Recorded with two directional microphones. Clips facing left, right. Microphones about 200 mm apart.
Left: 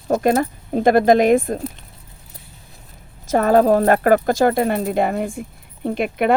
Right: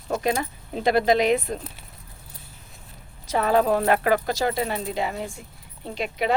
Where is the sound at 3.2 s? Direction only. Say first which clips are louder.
Left 6 dB; 45° left (ahead or behind).